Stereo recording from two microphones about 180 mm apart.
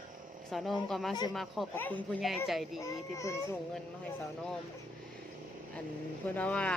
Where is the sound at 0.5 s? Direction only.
Centre (ahead or behind); by 3.3 s 15° left (ahead or behind).